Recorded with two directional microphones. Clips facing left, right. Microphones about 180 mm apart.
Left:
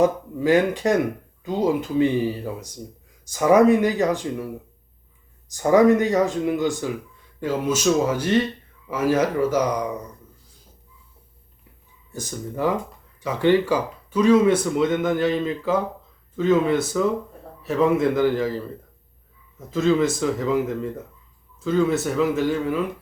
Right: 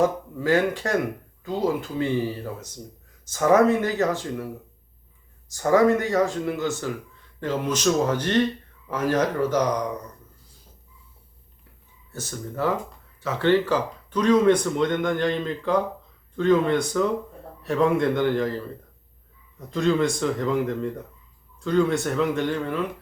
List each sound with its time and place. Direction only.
0.0 s speech: 20° left (ahead or behind)
5.5 s speech: 15° left (ahead or behind)
12.1 s speech: 15° left (ahead or behind)